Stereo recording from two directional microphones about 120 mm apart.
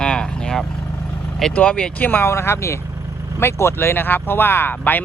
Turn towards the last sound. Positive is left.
turn(degrees=15)  # may be behind; listen again after turning